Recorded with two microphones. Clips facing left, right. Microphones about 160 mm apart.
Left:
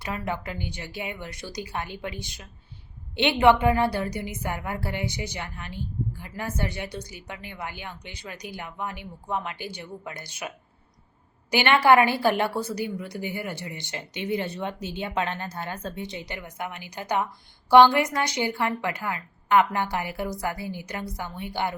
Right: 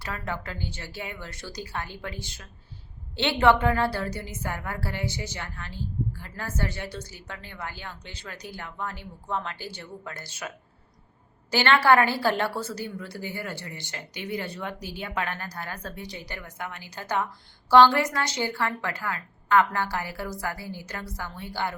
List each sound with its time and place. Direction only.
0.0 s a woman's voice: 15° left (ahead or behind)
11.5 s a woman's voice: 15° left (ahead or behind)